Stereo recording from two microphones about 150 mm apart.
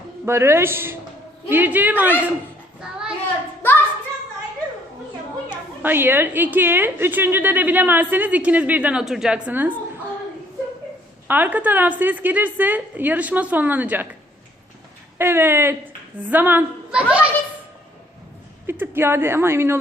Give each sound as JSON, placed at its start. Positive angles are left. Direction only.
{"t": 0.3, "sound": "a woman's voice", "side_deg": -15}
{"t": 2.8, "sound": "child singing", "side_deg": -5}
{"t": 3.6, "sound": "a sound", "side_deg": 15}
{"t": 5.5, "sound": "a woman's voice", "side_deg": -15}
{"t": 11.3, "sound": "a woman's voice", "side_deg": -10}
{"t": 15.2, "sound": "a woman's voice", "side_deg": -15}
{"t": 18.6, "sound": "a woman's voice", "side_deg": -15}